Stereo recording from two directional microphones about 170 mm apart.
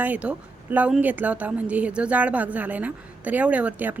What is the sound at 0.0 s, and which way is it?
A woman's voice, 10° right (ahead or behind).